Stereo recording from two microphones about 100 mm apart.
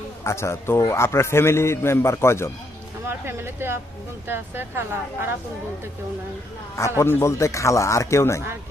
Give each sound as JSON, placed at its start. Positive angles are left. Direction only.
{"t": 0.3, "sound": "a man's voice", "side_deg": 25}
{"t": 3.1, "sound": "speech", "side_deg": -25}
{"t": 6.7, "sound": "a man's voice", "side_deg": 30}